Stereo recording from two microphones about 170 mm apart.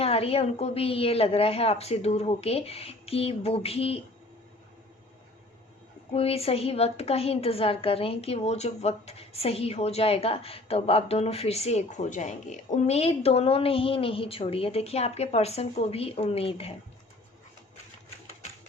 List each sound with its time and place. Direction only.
0.0 s a woman's voice: 35° left (ahead or behind)
6.1 s a woman's voice: 35° left (ahead or behind)